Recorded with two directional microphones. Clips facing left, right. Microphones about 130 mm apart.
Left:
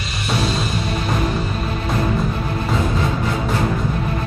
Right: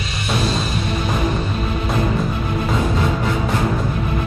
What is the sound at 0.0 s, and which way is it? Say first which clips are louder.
Music: even; centre (ahead or behind).